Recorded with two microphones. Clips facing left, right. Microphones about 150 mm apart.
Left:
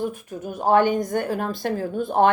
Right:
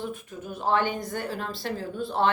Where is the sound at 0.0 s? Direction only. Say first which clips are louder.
Left 6 dB; 45° left (ahead or behind).